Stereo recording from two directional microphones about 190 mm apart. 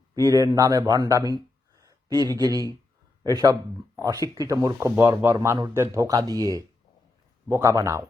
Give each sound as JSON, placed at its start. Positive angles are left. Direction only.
{"t": 0.3, "sound": "speech", "side_deg": -20}
{"t": 7.4, "sound": "speech", "side_deg": -15}